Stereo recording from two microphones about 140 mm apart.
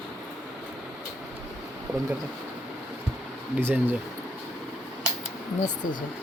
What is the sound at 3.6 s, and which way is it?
Speech, 15° right (ahead or behind).